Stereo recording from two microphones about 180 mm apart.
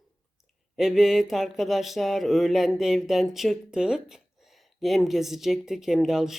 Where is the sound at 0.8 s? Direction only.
Centre (ahead or behind).